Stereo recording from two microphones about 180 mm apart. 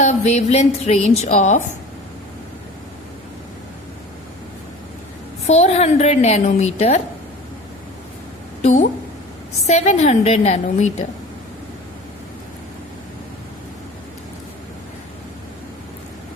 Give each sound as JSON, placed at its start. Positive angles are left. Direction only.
{"t": 0.0, "sound": "a woman's voice", "side_deg": 40}
{"t": 5.5, "sound": "a woman's voice", "side_deg": 35}
{"t": 8.6, "sound": "a woman's voice", "side_deg": 40}